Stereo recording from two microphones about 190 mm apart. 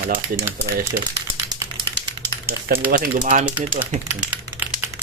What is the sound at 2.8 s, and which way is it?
Speech, 45° right (ahead or behind).